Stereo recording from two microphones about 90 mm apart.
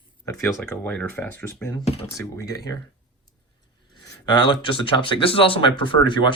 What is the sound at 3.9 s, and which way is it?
Speech, 55° left (ahead or behind).